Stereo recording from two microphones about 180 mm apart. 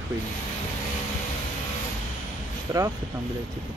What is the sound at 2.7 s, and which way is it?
Speech, 20° right (ahead or behind).